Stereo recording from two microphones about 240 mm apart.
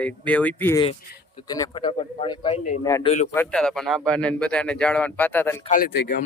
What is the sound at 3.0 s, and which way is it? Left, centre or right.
Speech, left.